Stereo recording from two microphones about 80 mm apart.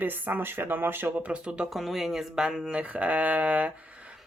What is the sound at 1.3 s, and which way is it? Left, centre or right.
Speech, centre.